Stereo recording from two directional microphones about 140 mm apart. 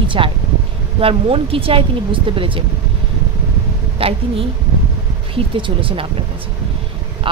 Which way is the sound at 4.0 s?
45° right (ahead or behind).